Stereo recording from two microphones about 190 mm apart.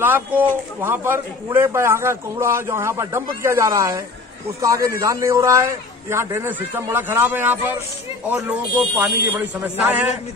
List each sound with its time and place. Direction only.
0.0 s a man's voice: 10° right (ahead or behind)